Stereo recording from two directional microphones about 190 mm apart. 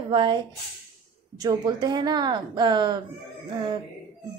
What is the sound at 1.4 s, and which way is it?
A woman's voice, 20° right (ahead or behind).